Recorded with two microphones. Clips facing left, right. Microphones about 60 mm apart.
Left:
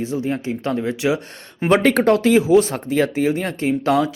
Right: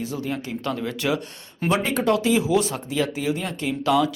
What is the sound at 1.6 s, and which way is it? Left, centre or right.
Speech, left.